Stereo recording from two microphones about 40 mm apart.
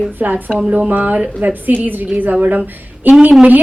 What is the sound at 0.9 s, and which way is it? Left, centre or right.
Speech, right.